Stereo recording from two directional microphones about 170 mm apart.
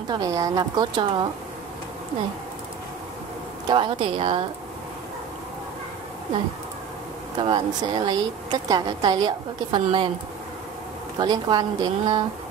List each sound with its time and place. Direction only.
0.1 s a woman's voice: 20° right (ahead or behind)
3.6 s a woman's voice: 30° right (ahead or behind)
7.3 s a woman's voice: 25° right (ahead or behind)
11.1 s a woman's voice: 25° right (ahead or behind)